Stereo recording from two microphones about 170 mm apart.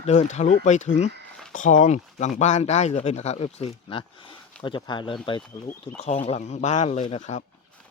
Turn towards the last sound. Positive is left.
turn(degrees=40)  # may be behind; listen again after turning